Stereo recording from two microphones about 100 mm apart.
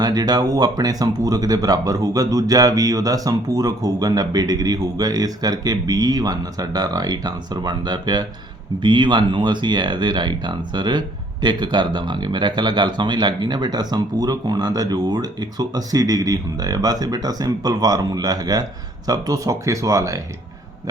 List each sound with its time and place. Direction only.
0.0 s speech: 45° right (ahead or behind)